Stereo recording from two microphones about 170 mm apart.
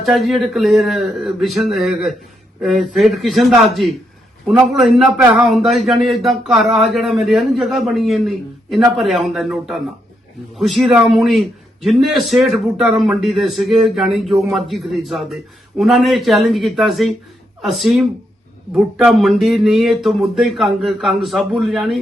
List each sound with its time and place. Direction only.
0.0 s a man's voice: centre (ahead or behind)